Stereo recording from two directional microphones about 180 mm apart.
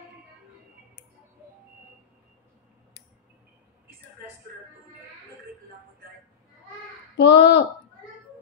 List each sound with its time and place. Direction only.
7.2 s speech: 75° left (ahead or behind)